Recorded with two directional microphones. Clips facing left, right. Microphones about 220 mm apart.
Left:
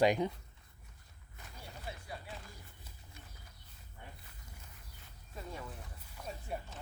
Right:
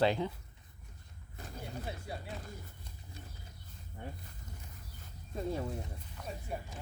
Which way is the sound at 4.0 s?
45° right (ahead or behind).